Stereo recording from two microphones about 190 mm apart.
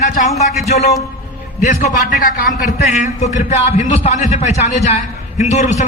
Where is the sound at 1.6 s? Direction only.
45° left (ahead or behind).